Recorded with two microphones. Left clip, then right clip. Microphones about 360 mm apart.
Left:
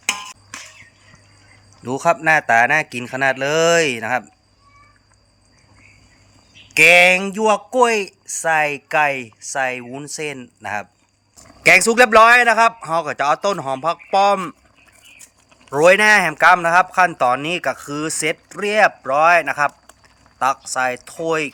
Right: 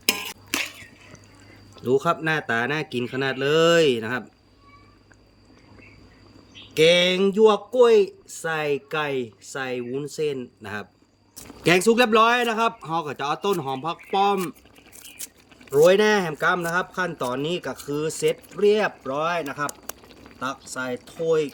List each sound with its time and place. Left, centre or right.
1.8 s speech: centre
6.7 s speech: centre
15.7 s speech: centre